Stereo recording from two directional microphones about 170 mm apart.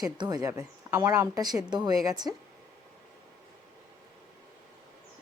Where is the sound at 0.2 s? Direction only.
20° right (ahead or behind).